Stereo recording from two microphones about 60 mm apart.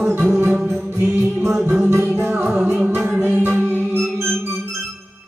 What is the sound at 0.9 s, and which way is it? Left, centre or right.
Music, right.